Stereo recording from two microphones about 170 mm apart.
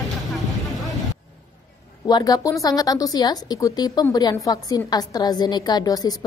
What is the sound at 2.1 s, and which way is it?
A woman's voice, 25° left (ahead or behind).